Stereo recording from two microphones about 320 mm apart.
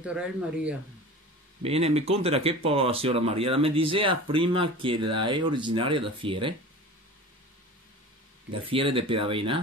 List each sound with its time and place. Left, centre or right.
0.0 s speech: centre
1.6 s speech: centre
8.6 s speech: centre